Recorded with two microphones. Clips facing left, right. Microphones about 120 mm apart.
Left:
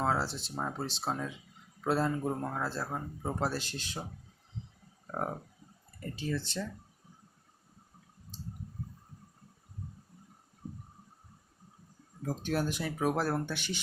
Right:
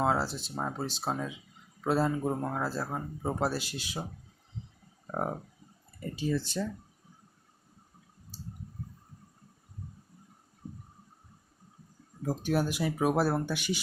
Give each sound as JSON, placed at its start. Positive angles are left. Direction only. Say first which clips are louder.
{"t": 0.0, "sound": "a man's voice", "louder": "right 3 dB", "side_deg": -5}
{"t": 5.0, "sound": "a man's voice", "louder": "right 3 dB", "side_deg": -15}
{"t": 12.2, "sound": "a man's voice", "louder": "right 3 dB", "side_deg": -10}